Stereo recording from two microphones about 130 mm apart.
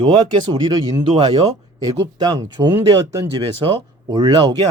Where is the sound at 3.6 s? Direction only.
35° right (ahead or behind).